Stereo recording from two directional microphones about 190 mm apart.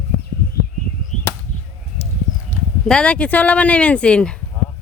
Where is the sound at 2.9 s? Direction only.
5° left (ahead or behind).